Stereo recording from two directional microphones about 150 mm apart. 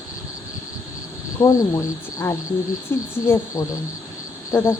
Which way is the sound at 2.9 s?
15° left (ahead or behind).